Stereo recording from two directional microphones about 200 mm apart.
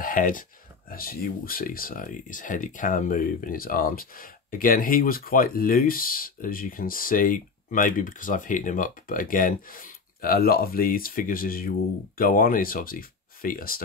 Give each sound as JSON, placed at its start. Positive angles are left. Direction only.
{"t": 0.0, "sound": "speech", "side_deg": 40}